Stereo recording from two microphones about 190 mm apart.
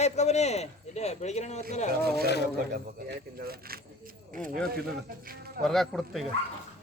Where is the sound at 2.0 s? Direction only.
55° right (ahead or behind).